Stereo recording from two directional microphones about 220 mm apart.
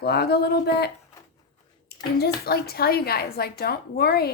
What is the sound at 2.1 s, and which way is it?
Speech, 45° left (ahead or behind).